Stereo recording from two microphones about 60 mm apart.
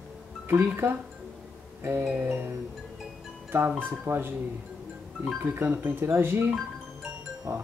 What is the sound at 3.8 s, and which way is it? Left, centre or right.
Speech, right.